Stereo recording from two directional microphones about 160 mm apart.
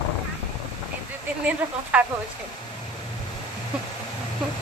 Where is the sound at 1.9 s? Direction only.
10° right (ahead or behind).